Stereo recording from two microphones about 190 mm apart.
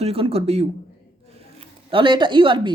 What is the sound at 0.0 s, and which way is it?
Speech, 30° right (ahead or behind).